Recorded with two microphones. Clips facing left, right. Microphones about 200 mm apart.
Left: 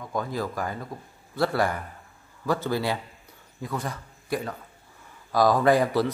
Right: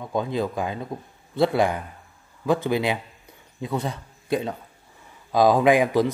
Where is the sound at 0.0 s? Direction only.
20° right (ahead or behind).